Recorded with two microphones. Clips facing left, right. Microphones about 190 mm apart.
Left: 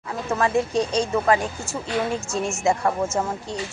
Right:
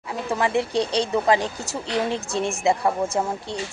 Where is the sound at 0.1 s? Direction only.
15° right (ahead or behind).